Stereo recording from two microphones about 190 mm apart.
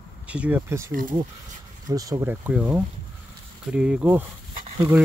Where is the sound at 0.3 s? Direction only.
10° right (ahead or behind).